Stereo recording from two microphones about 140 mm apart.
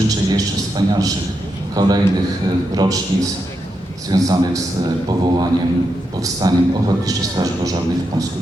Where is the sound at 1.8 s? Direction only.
30° right (ahead or behind).